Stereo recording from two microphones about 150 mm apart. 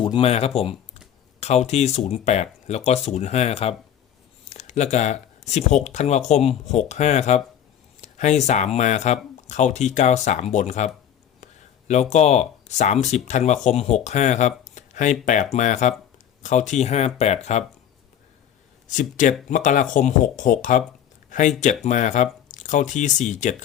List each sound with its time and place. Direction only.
0.0 s speech: 35° left (ahead or behind)
12.1 s speech: 50° left (ahead or behind)
18.9 s speech: 55° left (ahead or behind)
21.2 s a sound: 55° left (ahead or behind)
21.8 s speech: 55° left (ahead or behind)